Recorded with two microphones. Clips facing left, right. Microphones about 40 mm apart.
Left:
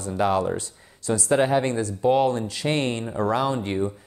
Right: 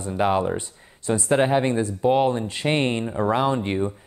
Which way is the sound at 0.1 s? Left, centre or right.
Right.